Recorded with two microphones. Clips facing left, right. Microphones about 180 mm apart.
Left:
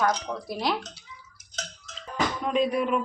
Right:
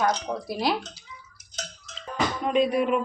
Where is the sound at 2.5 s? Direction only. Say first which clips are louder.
Right 3 dB; centre (ahead or behind).